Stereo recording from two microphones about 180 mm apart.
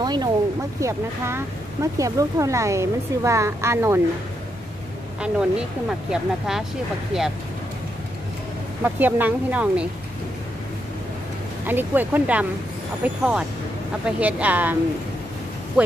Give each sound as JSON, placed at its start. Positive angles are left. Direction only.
{"t": 0.0, "sound": "a sound", "side_deg": -25}
{"t": 0.7, "sound": "speech", "side_deg": -15}
{"t": 5.2, "sound": "speech", "side_deg": -5}
{"t": 7.1, "sound": "speech", "side_deg": -5}
{"t": 8.8, "sound": "speech", "side_deg": -10}
{"t": 11.6, "sound": "speech", "side_deg": -10}